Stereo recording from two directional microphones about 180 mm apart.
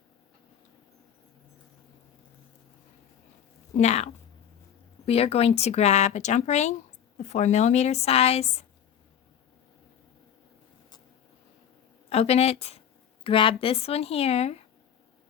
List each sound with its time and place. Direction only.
3.8 s speech: 40° left (ahead or behind)
12.0 s speech: 35° left (ahead or behind)